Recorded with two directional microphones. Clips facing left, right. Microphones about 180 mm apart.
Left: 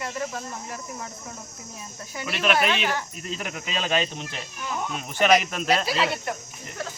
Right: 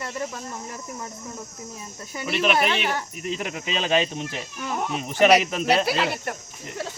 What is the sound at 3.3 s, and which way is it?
Speech, 20° right (ahead or behind).